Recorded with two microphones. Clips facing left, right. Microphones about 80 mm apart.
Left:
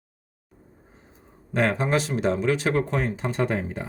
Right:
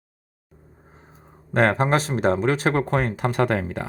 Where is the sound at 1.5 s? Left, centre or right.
Right.